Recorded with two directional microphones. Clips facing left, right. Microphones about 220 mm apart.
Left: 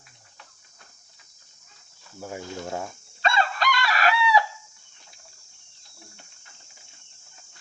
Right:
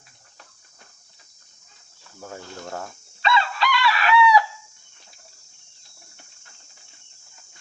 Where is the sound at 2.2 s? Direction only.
15° left (ahead or behind).